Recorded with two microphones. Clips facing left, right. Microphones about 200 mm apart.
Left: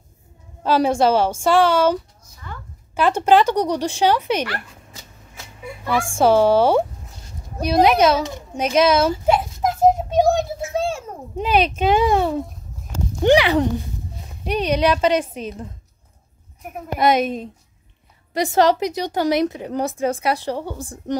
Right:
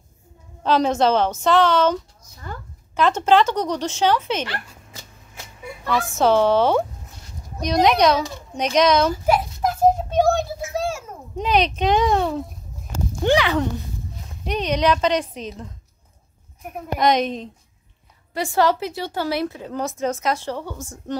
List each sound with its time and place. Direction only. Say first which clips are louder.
0.7 s speech: left 1 dB; 10° left (ahead or behind)
6.1 s a child's voice: left 2 dB; 10° left (ahead or behind)
9.1 s child singing: left 1 dB; 25° left (ahead or behind)
11.3 s speech: left 1 dB; 5° left (ahead or behind)
18.6 s speech: left 3 dB; 20° left (ahead or behind)
20.7 s a woman's voice: left 3 dB; 35° left (ahead or behind)